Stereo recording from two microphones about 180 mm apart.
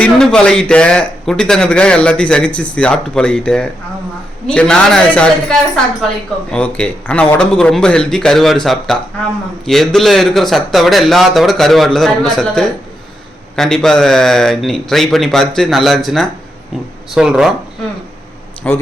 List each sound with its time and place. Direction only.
0.0 s speech: 5° left (ahead or behind)
18.6 s speech: 5° left (ahead or behind)